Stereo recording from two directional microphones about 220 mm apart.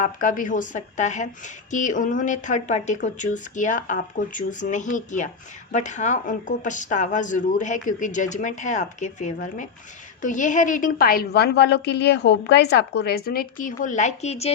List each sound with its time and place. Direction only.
0.0 s a woman's voice: 35° left (ahead or behind)